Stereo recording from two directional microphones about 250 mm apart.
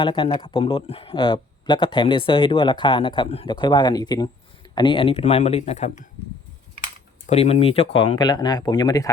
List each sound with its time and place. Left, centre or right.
0.0 s speech: centre
7.3 s speech: left